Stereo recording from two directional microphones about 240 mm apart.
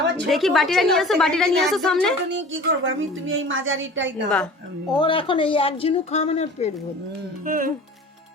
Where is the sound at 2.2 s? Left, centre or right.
Right.